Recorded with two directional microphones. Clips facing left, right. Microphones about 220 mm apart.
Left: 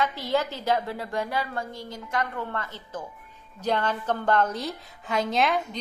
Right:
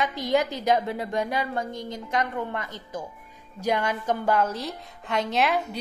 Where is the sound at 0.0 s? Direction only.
15° right (ahead or behind).